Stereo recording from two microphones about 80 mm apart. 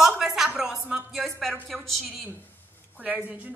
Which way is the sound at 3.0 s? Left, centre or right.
Centre.